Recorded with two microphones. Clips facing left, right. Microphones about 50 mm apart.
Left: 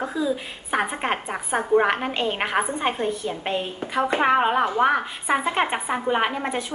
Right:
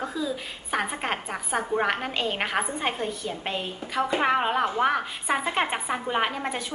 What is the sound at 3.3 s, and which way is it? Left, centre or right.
A woman's voice, centre.